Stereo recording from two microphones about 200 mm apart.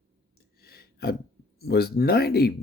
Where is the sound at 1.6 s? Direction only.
50° left (ahead or behind).